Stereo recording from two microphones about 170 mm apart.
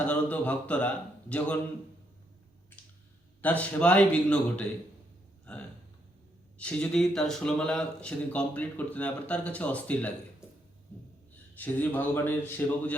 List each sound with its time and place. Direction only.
0.0 s speech: 10° left (ahead or behind)
3.4 s speech: 10° left (ahead or behind)
6.6 s speech: 5° left (ahead or behind)
10.9 s a sound: 10° left (ahead or behind)
11.5 s speech: 10° left (ahead or behind)